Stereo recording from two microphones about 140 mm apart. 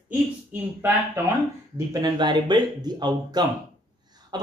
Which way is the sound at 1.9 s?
30° right (ahead or behind).